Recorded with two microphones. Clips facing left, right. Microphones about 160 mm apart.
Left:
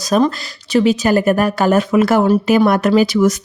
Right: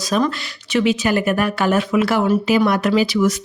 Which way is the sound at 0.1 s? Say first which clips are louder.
Left 5 dB; 40° left (ahead or behind).